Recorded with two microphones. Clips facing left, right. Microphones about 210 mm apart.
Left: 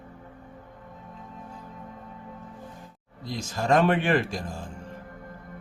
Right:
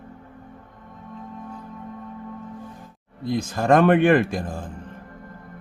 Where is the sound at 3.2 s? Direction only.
55° right (ahead or behind).